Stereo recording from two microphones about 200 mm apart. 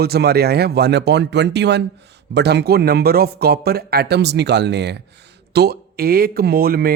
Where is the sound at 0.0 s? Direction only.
55° right (ahead or behind).